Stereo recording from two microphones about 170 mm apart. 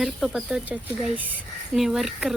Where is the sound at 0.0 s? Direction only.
Centre (ahead or behind).